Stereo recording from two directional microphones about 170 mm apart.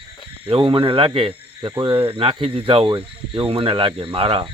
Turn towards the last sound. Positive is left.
turn(degrees=-30)  # may be behind; listen again after turning